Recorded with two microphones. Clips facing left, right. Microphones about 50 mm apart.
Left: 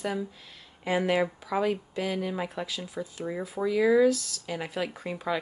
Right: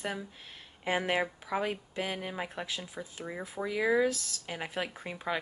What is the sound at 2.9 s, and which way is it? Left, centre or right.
Speech, right.